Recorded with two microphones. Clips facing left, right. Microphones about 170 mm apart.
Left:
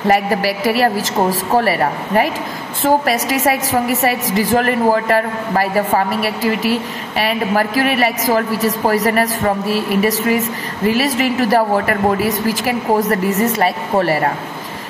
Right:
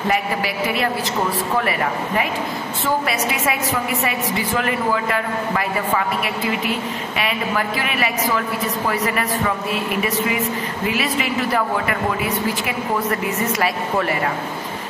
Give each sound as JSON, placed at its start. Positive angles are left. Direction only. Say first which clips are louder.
{"t": 0.1, "sound": "a woman's voice", "louder": "left 8 dB", "side_deg": 40}